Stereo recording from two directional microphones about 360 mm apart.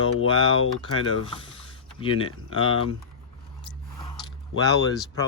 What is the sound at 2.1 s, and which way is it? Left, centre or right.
Speech, left.